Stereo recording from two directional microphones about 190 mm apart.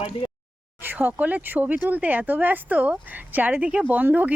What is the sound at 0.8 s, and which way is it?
Speech, 10° right (ahead or behind).